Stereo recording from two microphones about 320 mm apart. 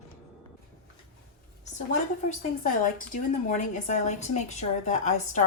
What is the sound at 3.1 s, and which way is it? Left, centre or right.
Speech, left.